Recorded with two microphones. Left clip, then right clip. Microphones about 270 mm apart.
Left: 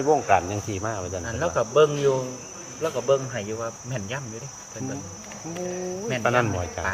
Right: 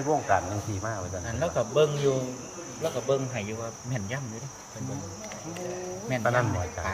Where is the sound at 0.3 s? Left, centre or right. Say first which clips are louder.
Left 5 dB; left.